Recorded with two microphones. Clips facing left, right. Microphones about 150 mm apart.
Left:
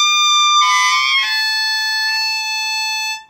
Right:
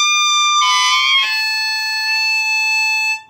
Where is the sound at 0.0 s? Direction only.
20° right (ahead or behind).